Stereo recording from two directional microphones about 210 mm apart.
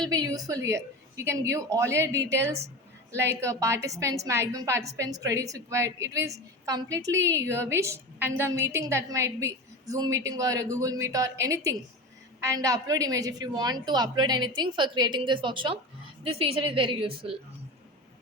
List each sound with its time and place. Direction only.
0.1 s a woman's voice: 15° right (ahead or behind)